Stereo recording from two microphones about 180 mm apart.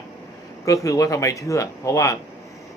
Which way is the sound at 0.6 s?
15° left (ahead or behind).